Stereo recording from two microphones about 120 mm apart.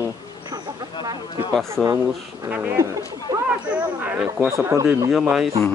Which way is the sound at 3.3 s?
30° right (ahead or behind).